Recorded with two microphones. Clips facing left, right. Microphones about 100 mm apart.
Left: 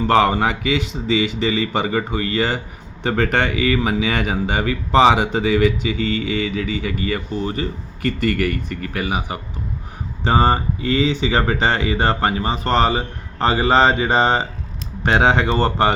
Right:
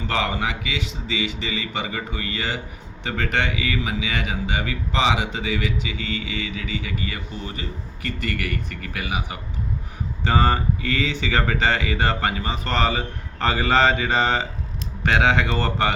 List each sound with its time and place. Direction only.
0.1 s a man's voice: 40° left (ahead or behind)